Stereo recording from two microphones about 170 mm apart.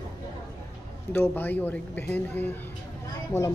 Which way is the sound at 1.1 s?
10° left (ahead or behind).